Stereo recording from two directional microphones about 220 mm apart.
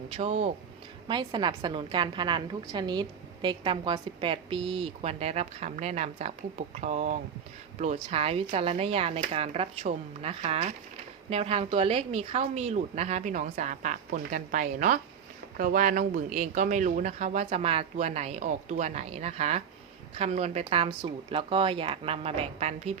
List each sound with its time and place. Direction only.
0.2 s a woman's voice: 30° right (ahead or behind)